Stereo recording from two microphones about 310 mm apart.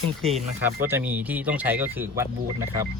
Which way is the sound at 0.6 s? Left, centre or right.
Centre.